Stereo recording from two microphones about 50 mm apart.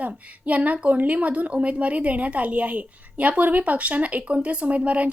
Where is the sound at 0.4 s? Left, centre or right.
Right.